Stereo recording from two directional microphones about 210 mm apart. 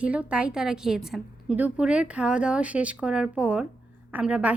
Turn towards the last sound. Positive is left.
turn(degrees=-5)  # may be behind; listen again after turning